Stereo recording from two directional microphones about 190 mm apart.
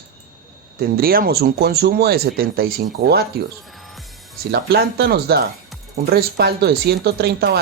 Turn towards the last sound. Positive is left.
turn(degrees=-55)  # may be behind; listen again after turning